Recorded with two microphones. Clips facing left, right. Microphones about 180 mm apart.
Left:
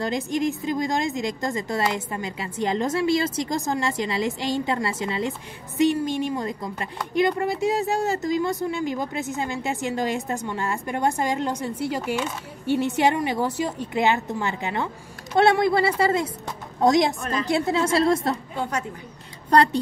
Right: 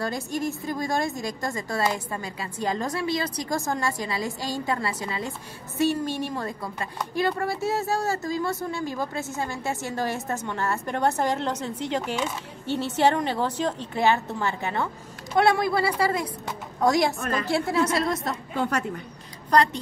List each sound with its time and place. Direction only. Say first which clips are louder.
0.0 s a woman's voice: left 4 dB; 20° left (ahead or behind)
19.5 s a woman's voice: left 3 dB; 30° left (ahead or behind)